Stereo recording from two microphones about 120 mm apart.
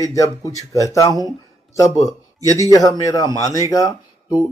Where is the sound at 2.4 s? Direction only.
30° right (ahead or behind).